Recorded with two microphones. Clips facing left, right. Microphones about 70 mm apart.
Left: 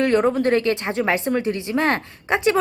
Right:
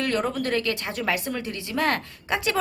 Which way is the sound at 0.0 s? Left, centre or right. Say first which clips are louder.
Left 8 dB; left.